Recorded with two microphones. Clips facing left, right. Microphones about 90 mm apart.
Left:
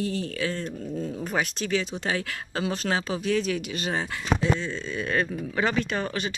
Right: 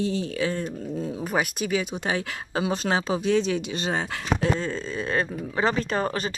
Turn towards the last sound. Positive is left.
turn(degrees=-40)  # may be behind; listen again after turning